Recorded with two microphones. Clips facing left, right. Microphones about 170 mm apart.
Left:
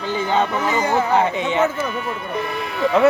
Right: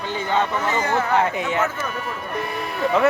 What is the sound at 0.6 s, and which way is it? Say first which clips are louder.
Speech: left 3 dB; 10° left (ahead or behind).